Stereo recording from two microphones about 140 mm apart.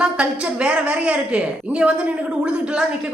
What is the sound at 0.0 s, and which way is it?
A woman's voice, 5° right (ahead or behind).